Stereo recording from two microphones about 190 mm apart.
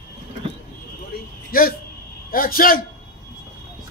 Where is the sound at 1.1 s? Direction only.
55° left (ahead or behind).